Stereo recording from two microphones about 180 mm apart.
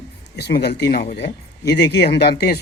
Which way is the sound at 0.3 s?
65° left (ahead or behind).